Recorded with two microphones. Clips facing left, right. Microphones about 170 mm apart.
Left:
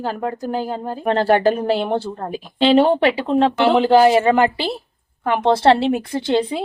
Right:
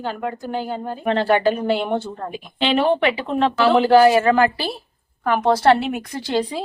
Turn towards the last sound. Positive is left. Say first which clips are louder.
# left 4 dB
turn(degrees=25)  # may be behind; listen again after turning